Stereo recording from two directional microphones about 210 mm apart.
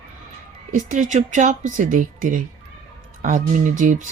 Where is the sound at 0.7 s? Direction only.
35° right (ahead or behind).